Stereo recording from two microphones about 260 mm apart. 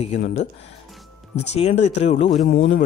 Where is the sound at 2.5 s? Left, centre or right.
Left.